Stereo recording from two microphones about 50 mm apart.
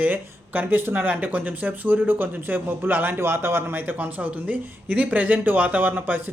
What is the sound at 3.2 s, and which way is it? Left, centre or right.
Speech, right.